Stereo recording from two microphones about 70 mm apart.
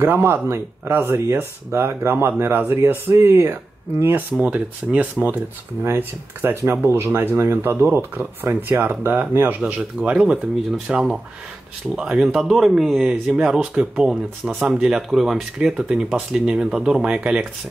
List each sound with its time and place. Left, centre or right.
0.0 s speech: right
4.4 s speech: centre
5.9 s speech: right; by 15.7 s centre
15.9 s speech: centre